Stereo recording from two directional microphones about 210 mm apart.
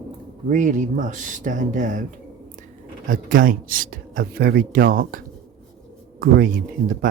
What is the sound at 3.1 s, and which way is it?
Speech, 40° right (ahead or behind).